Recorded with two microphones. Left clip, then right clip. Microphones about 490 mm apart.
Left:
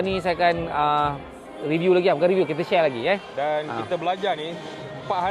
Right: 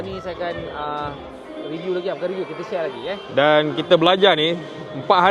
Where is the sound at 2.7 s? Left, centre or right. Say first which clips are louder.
Left 5 dB; left.